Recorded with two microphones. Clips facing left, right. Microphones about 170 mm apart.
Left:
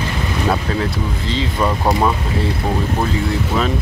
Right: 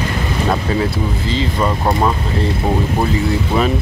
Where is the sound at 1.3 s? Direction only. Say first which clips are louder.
Even; centre (ahead or behind).